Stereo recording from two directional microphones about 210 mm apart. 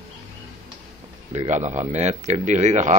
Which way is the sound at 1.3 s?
35° right (ahead or behind).